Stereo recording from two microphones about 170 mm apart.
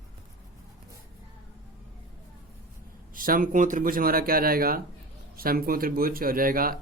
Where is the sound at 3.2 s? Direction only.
55° right (ahead or behind).